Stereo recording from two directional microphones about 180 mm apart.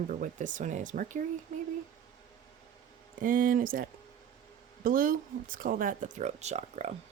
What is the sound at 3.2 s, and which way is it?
Speech, 50° right (ahead or behind).